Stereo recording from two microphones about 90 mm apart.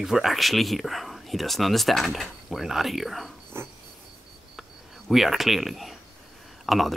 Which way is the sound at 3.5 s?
30° right (ahead or behind).